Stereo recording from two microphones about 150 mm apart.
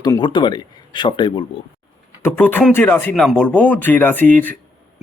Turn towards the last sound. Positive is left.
turn(degrees=10)  # may be behind; listen again after turning